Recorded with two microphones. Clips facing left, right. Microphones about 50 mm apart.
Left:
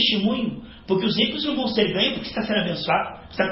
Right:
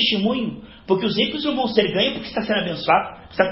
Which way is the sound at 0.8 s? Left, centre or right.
Right.